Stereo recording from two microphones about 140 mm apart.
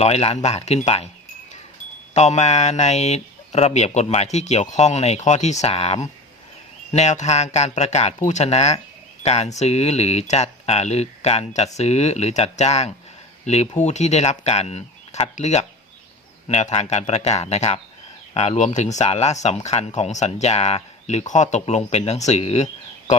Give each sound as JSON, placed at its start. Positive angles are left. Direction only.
{"t": 0.0, "sound": "speech", "side_deg": 45}
{"t": 2.1, "sound": "speech", "side_deg": 55}